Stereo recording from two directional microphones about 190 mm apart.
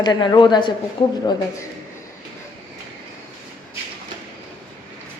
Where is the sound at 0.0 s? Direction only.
20° left (ahead or behind).